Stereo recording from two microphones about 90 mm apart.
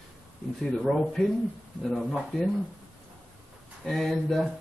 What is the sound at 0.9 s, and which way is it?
Speech, 5° right (ahead or behind).